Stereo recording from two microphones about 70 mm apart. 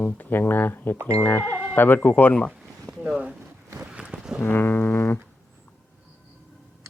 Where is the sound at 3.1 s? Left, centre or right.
Centre.